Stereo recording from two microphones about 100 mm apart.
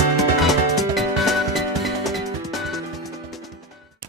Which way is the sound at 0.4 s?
Centre (ahead or behind).